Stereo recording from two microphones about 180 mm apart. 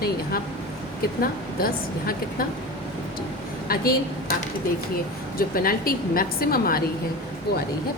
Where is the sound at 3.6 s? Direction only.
55° left (ahead or behind).